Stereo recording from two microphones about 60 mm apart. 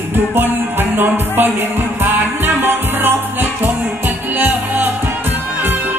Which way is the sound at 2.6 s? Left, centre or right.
Right.